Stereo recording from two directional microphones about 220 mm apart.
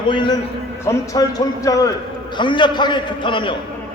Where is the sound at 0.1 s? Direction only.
20° left (ahead or behind).